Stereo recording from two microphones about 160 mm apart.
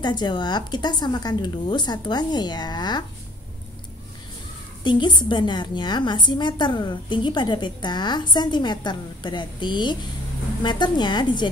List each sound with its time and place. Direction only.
0.0 s a woman's voice: 25° left (ahead or behind)
4.8 s a woman's voice: 30° left (ahead or behind)